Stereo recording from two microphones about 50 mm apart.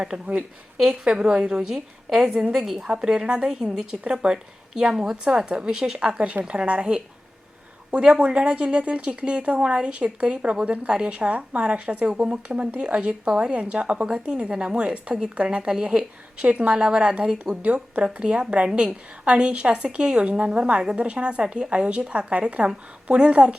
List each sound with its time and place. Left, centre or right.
0.8 s a woman's voice: centre